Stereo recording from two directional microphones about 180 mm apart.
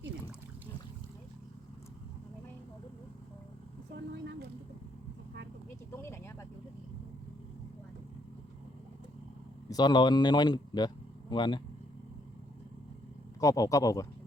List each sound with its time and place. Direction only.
6.0 s vehicle: 15° left (ahead or behind)
9.6 s speech: 25° left (ahead or behind)
13.4 s speech: 20° left (ahead or behind)